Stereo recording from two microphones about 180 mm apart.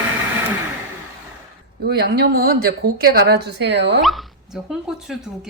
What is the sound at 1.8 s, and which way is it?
A woman's voice, 65° right (ahead or behind).